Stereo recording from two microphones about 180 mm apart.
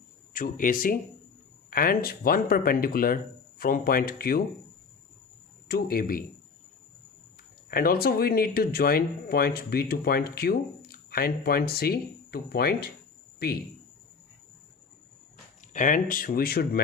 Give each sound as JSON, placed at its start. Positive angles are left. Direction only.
{"t": 0.3, "sound": "speech", "side_deg": 50}
{"t": 5.6, "sound": "speech", "side_deg": 55}
{"t": 7.7, "sound": "speech", "side_deg": 55}
{"t": 15.6, "sound": "speech", "side_deg": 45}